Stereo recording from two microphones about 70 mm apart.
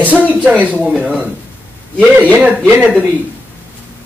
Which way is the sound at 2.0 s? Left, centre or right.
Right.